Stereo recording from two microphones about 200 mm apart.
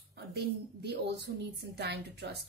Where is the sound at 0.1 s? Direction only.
55° right (ahead or behind).